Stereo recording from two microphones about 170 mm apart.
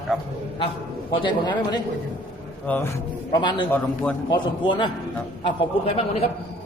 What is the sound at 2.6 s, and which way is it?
Speech, 10° left (ahead or behind).